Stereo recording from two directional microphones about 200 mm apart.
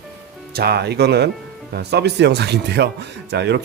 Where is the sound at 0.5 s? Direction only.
55° right (ahead or behind).